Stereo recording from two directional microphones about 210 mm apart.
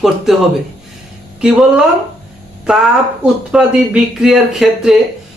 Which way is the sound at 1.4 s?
5° right (ahead or behind).